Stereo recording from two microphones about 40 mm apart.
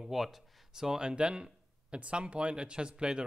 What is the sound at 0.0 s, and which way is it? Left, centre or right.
Speech, centre.